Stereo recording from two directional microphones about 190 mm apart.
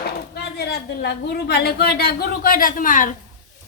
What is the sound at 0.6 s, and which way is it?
A woman's voice, 60° left (ahead or behind).